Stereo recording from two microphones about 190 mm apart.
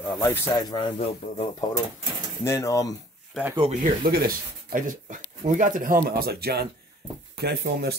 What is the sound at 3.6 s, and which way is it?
Speech, 40° right (ahead or behind).